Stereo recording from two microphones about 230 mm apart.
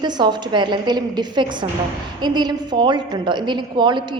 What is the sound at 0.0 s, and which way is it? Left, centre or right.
A woman's voice, centre.